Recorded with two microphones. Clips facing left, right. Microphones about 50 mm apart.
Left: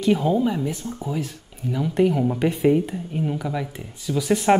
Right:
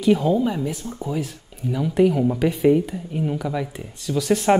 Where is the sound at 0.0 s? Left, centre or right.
Centre.